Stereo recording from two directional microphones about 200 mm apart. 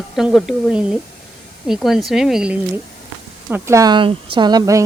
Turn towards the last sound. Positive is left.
turn(degrees=-20)  # may be behind; listen again after turning